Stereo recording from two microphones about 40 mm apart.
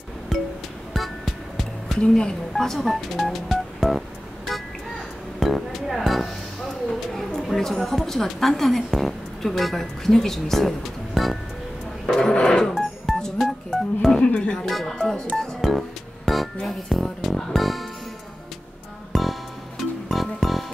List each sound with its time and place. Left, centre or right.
0.3 s music: centre
2.0 s a woman's voice: centre
2.5 s speech: centre
4.5 s a sound: centre
5.4 s music: centre
7.2 s a woman's voice: centre
12.2 s speech: centre
13.1 s telephone dialing: centre
14.2 s music: left
14.7 s speech: centre
15.6 s music: centre
16.6 s speech: centre
19.1 s music: centre